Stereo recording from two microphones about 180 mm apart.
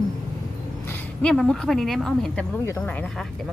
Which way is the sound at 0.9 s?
10° left (ahead or behind).